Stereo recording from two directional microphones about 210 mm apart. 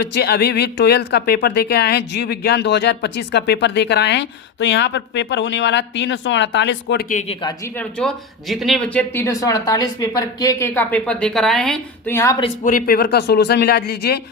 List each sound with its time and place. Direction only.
0.0 s speech: 50° left (ahead or behind)
7.8 s speech: 5° left (ahead or behind)
12.6 s speech: 40° left (ahead or behind)